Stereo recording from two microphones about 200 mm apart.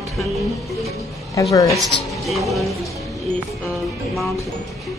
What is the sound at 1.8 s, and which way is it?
Speech, centre (ahead or behind).